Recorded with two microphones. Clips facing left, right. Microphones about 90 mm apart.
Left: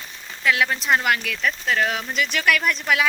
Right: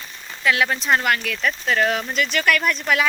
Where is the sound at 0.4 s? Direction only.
Centre (ahead or behind).